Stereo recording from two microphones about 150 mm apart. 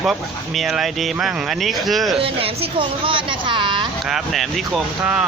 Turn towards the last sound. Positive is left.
turn(degrees=0)  # may be behind; listen again after turning